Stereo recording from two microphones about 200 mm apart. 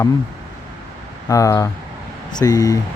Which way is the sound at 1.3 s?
15° left (ahead or behind).